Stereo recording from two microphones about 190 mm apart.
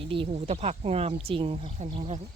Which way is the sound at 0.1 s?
30° right (ahead or behind).